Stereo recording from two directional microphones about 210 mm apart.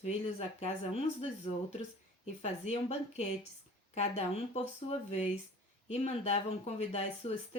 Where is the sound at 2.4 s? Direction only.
30° left (ahead or behind).